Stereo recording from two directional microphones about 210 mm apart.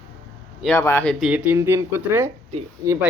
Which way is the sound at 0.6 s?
10° left (ahead or behind).